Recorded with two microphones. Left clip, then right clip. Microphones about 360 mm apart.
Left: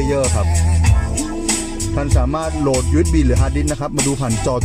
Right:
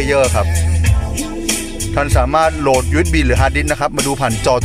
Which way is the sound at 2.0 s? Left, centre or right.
Right.